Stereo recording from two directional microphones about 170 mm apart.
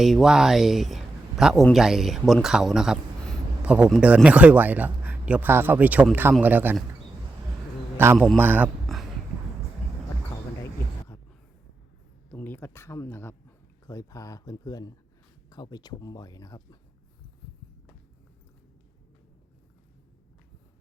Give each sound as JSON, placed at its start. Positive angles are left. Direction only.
{"t": 0.0, "sound": "speech", "side_deg": 0}
{"t": 7.9, "sound": "speech", "side_deg": -15}
{"t": 12.3, "sound": "speech", "side_deg": 10}